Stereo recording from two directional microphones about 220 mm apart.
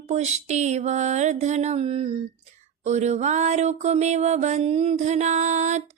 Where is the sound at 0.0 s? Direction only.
30° right (ahead or behind).